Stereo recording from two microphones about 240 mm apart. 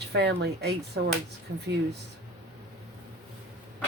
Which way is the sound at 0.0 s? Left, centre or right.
Right.